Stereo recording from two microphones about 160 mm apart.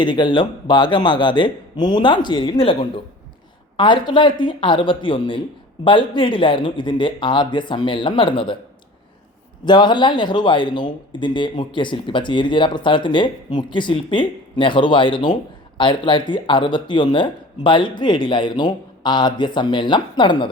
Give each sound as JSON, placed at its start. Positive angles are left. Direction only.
{"t": 0.0, "sound": "a man's voice", "side_deg": 30}
{"t": 9.6, "sound": "a man's voice", "side_deg": 30}